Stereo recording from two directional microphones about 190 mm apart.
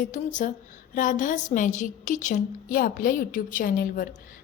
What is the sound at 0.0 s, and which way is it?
A woman's voice, 45° left (ahead or behind).